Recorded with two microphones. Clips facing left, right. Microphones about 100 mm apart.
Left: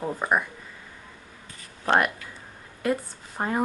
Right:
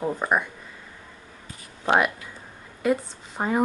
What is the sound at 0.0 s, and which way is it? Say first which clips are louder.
Speech: right 1 dB; centre (ahead or behind).